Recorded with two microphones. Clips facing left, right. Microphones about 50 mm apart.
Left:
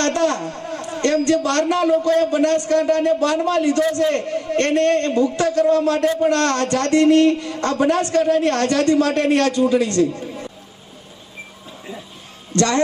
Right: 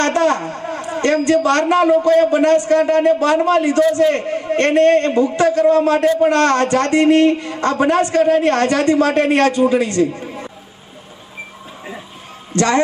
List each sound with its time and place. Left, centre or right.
0.0 s a sound: right
1.5 s a man's voice: right
12.5 s a man's voice: right